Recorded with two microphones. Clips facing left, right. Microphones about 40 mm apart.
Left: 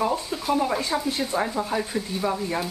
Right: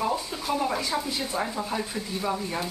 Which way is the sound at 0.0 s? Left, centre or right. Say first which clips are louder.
Left 3 dB; centre.